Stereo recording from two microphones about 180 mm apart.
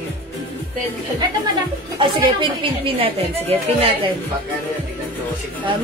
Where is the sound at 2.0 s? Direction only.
25° right (ahead or behind).